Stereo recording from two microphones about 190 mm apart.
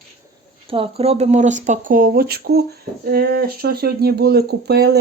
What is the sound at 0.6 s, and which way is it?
Speech, 30° right (ahead or behind).